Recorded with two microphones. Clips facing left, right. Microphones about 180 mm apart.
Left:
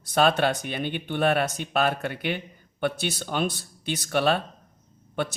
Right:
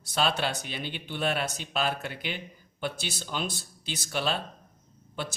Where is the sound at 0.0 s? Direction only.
55° left (ahead or behind).